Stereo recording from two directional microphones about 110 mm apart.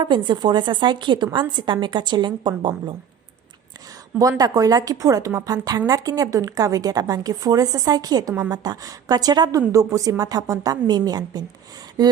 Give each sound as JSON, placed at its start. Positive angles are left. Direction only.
{"t": 0.0, "sound": "a woman's voice", "side_deg": -45}
{"t": 4.2, "sound": "a woman's voice", "side_deg": -35}